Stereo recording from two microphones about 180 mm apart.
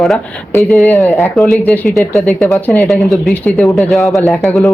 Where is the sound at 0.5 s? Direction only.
10° left (ahead or behind).